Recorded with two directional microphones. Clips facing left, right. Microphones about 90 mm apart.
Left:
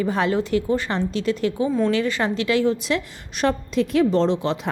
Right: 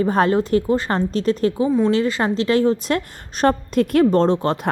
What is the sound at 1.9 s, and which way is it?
Speech, 30° right (ahead or behind).